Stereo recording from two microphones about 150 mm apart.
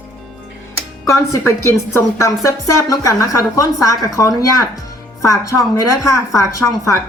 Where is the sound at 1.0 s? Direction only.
20° left (ahead or behind).